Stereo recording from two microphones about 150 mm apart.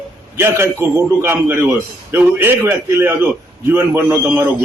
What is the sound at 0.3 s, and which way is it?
A man's voice, 15° right (ahead or behind).